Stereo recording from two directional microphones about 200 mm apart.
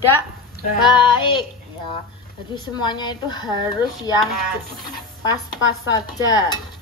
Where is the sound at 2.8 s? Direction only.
20° left (ahead or behind).